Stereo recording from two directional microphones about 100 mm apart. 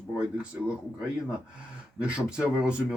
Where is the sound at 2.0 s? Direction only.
10° right (ahead or behind).